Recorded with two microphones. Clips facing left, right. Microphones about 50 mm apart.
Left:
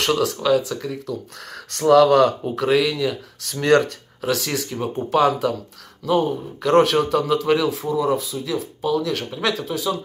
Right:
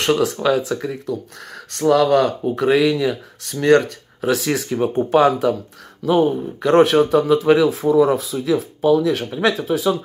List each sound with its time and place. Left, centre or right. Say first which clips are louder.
0.0 s speech: right 3 dB; right
1.7 s speech: left 1 dB; centre
3.6 s speech: right 2 dB; centre
4.3 s speech: right 4 dB; right
7.8 s speech: right 6 dB; right
9.0 s speech: right 5 dB; centre